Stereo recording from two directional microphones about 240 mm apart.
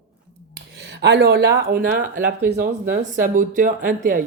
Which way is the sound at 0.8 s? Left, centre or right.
Right.